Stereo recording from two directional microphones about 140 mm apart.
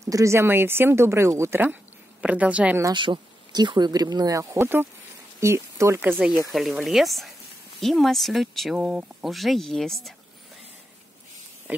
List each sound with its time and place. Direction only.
0.0 s speech: 20° right (ahead or behind)
2.8 s speech: 35° right (ahead or behind); by 6.3 s 15° right (ahead or behind)
6.5 s speech: centre (ahead or behind)